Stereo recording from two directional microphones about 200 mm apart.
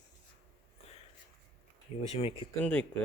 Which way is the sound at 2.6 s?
10° left (ahead or behind).